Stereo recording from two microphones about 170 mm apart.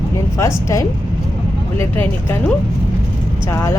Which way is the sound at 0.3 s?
15° left (ahead or behind).